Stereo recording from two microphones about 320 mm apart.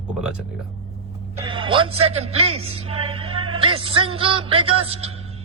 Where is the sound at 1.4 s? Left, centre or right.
Centre.